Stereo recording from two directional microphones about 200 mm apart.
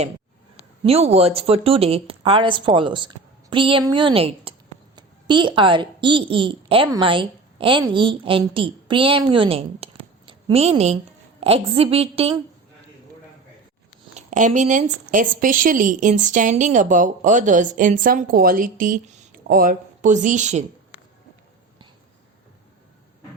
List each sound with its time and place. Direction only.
0.5 s a woman's voice: 30° right (ahead or behind)
14.1 s a woman's voice: 35° right (ahead or behind)